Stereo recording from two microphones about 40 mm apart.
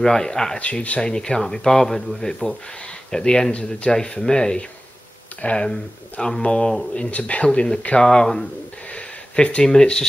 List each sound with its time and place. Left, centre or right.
0.0 s speech: centre
0.6 s speech: left
1.1 s speech: centre
5.4 s speech: left
6.3 s speech: centre
6.9 s speech: left; by 8.5 s centre
8.9 s a sound: left
9.7 s speech: centre